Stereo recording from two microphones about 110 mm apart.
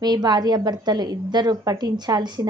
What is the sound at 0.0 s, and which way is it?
A woman's voice, 40° right (ahead or behind).